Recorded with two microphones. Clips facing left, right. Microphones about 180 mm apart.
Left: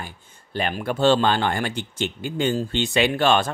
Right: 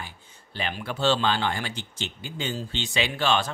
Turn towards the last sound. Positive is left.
turn(degrees=55)  # may be behind; listen again after turning